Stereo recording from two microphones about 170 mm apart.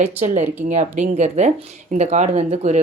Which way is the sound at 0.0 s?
40° right (ahead or behind).